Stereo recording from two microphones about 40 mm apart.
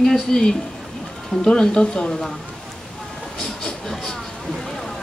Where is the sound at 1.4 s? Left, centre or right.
Centre.